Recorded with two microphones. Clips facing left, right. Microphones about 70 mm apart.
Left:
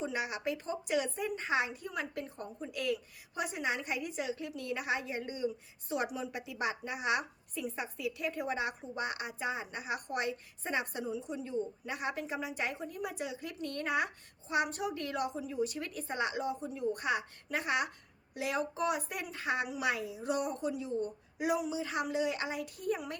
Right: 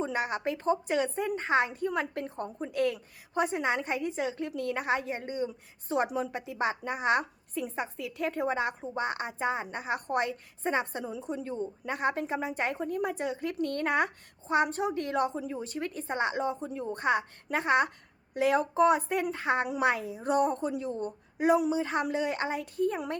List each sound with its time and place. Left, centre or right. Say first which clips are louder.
0.0 s a woman's voice: right 5 dB; right
8.4 s a woman's voice: right 5 dB; right
11.0 s a woman's voice: right 3 dB; right